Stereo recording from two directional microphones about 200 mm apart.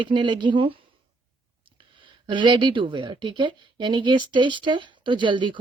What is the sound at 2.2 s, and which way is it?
A man's voice, 25° right (ahead or behind).